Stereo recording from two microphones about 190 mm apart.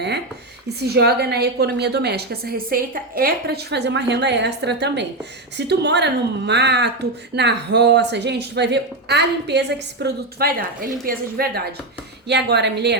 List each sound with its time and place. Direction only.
0.8 s a woman's voice: 55° right (ahead or behind)